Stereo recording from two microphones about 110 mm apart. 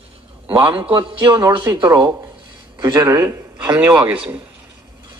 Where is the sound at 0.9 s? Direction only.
50° right (ahead or behind); by 3.7 s 35° right (ahead or behind).